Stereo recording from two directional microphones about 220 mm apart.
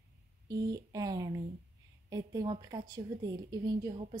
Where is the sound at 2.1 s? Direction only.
15° right (ahead or behind).